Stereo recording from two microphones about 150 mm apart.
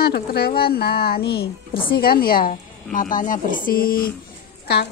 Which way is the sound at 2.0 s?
75° left (ahead or behind).